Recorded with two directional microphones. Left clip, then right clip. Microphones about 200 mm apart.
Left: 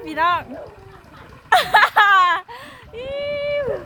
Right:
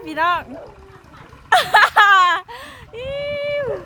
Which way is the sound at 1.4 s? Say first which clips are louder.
Right 1 dB; 10° right (ahead or behind).